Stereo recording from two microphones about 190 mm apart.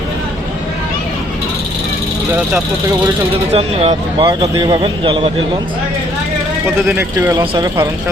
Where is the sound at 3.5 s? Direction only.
30° right (ahead or behind).